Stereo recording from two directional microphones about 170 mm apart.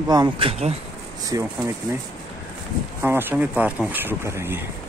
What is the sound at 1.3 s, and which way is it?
Speech, 20° right (ahead or behind).